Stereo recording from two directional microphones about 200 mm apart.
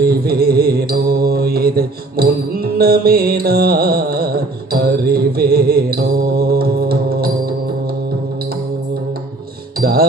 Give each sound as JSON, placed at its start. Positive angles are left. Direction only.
{"t": 0.0, "sound": "mantra", "side_deg": -50}
{"t": 9.8, "sound": "music", "side_deg": -50}